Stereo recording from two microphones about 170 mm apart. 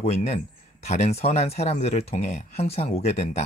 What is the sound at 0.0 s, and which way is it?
Speech, 40° left (ahead or behind).